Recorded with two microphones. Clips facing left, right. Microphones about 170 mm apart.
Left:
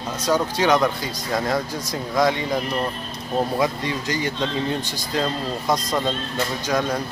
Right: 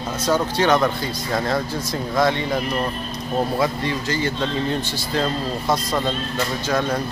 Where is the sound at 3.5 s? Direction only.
15° left (ahead or behind).